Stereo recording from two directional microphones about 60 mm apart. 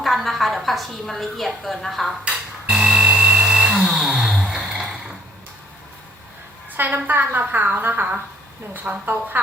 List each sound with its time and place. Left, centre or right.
0.0 s a woman's voice: centre
2.2 s a sound: centre
6.7 s a woman's voice: right